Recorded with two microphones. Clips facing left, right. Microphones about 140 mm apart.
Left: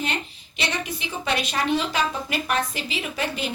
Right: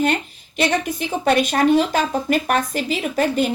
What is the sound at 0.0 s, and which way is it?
A woman's voice, 50° right (ahead or behind).